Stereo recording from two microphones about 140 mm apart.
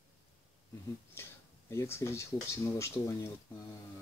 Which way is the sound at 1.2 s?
15° left (ahead or behind).